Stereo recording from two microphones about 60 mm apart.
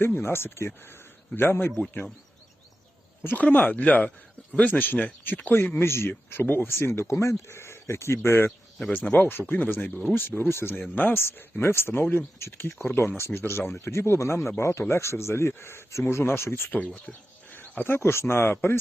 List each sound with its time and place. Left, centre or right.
0.0 s speech: left
3.2 s speech: left
5.8 s speech: left
10.9 s speech: left
11.2 s speech: left
16.7 s speech: left